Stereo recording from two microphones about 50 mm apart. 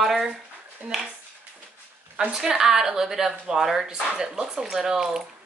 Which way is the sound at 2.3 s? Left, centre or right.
Centre.